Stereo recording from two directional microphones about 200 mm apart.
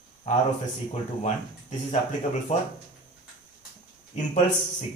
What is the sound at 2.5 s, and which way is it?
Speech, 35° left (ahead or behind).